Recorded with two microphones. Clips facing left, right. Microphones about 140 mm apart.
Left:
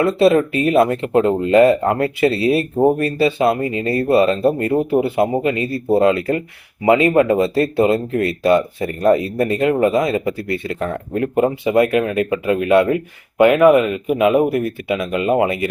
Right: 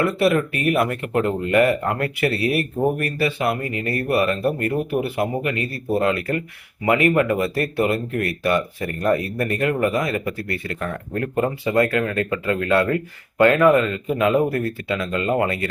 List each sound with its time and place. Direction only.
0.0 s speech: 25° left (ahead or behind)